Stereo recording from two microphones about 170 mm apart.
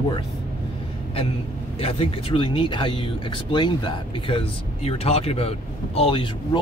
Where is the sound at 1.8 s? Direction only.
35° left (ahead or behind).